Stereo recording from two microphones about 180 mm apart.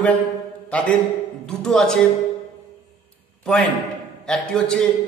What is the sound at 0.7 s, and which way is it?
A man's voice, 5° left (ahead or behind).